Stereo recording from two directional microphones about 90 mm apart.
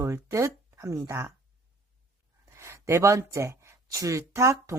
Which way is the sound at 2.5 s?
30° right (ahead or behind).